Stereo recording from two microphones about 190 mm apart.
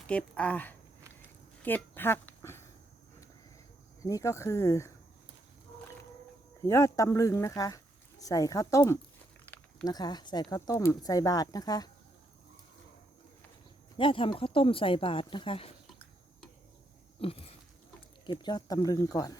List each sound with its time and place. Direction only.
0.1 s speech: 5° left (ahead or behind)
4.0 s speech: 15° left (ahead or behind)
6.6 s speech: 15° left (ahead or behind)
13.9 s speech: 25° left (ahead or behind)
17.2 s a sound: 30° left (ahead or behind)
18.3 s speech: 20° left (ahead or behind)